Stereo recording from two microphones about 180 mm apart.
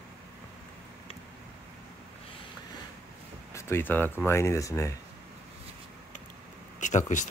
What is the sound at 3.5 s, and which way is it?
Speech, 10° left (ahead or behind).